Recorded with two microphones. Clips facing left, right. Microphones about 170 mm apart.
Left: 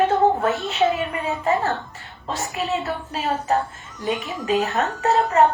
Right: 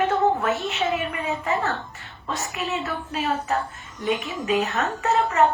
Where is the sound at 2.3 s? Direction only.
30° left (ahead or behind).